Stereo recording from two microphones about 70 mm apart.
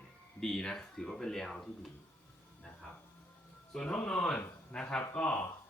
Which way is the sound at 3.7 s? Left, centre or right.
Centre.